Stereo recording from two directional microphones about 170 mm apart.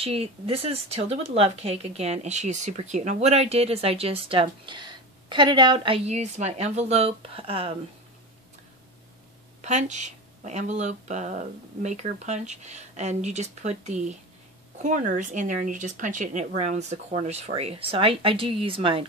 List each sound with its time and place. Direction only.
0.0 s speech: 35° right (ahead or behind)
9.6 s speech: 45° right (ahead or behind)